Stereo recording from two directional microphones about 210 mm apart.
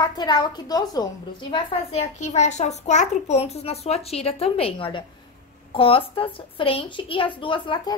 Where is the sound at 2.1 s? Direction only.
35° left (ahead or behind).